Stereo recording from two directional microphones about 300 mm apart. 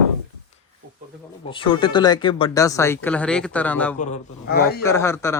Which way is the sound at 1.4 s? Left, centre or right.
Centre.